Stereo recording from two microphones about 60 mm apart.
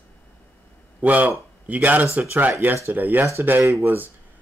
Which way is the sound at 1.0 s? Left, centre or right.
Right.